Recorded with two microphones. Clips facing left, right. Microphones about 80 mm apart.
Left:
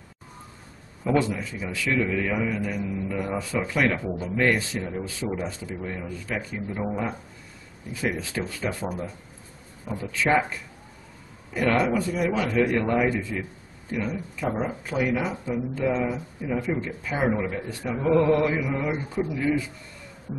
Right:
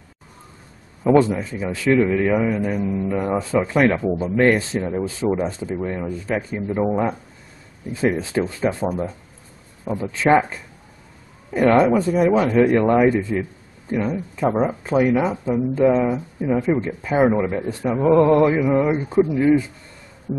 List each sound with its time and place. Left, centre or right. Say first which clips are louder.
1.2 s speech: right 7 dB; right
7.9 s a man's voice: right 8 dB; right
12.0 s a man's voice: right 8 dB; right